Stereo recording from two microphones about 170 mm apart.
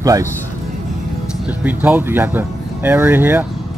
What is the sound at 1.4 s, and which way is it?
Speech, 10° right (ahead or behind).